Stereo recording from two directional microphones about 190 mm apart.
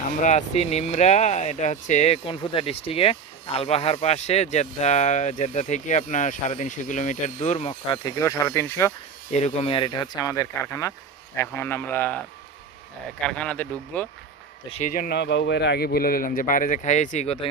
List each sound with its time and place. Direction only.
0.2 s speech: 40° left (ahead or behind)
8.0 s speech: 15° left (ahead or behind)
9.3 s speech: 35° left (ahead or behind); by 12.1 s 10° left (ahead or behind)
13.2 s speech: 5° left (ahead or behind)
14.7 s speech: 40° left (ahead or behind)